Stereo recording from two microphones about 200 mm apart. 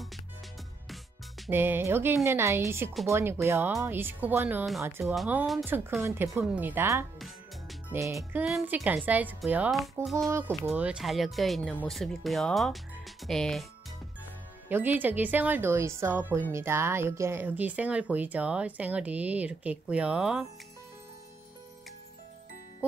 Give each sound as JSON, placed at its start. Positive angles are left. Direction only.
{"t": 1.5, "sound": "a woman's voice", "side_deg": -10}
{"t": 6.0, "sound": "a woman's voice", "side_deg": -15}
{"t": 8.2, "sound": "a woman's voice", "side_deg": -5}
{"t": 14.7, "sound": "a woman's voice", "side_deg": -10}